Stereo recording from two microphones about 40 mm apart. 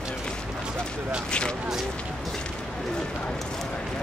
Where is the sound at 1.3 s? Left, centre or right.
Left.